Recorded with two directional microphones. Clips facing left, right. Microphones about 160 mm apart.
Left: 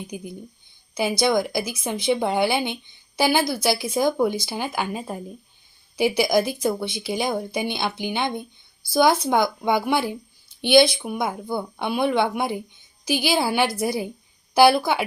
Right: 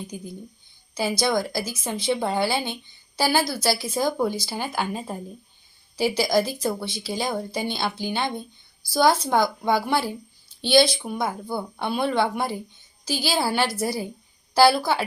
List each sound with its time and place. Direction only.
0.1 s a woman's voice: 15° left (ahead or behind)
4.8 s speech: 5° left (ahead or behind)
6.0 s a woman's voice: 15° left (ahead or behind)